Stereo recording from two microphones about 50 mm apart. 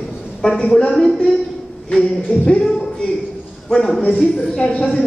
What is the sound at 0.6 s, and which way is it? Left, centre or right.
A woman's voice, left.